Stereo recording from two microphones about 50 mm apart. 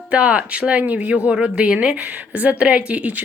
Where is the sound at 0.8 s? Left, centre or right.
Right.